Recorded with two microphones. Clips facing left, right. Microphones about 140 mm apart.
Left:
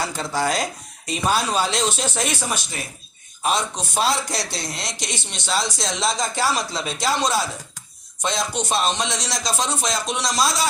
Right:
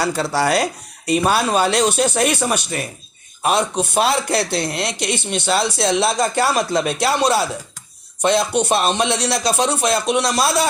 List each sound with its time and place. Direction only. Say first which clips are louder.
0.0 s speech: right 5 dB; 70° right (ahead or behind)